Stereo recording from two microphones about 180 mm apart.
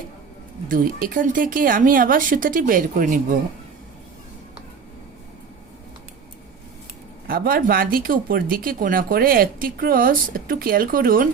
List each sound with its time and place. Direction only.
0.7 s speech: 50° right (ahead or behind)
7.3 s speech: 55° right (ahead or behind)